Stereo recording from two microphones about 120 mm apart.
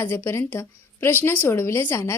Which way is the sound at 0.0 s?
15° left (ahead or behind).